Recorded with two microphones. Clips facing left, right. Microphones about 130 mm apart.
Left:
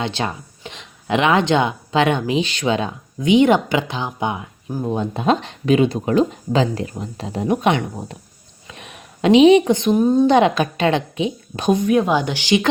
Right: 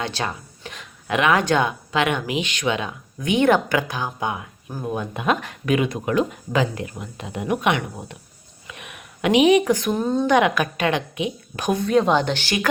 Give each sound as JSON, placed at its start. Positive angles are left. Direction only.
{"t": 0.0, "sound": "speech", "side_deg": 25}
{"t": 3.2, "sound": "speech", "side_deg": 20}
{"t": 10.2, "sound": "speech", "side_deg": 30}
{"t": 11.9, "sound": "speech", "side_deg": 10}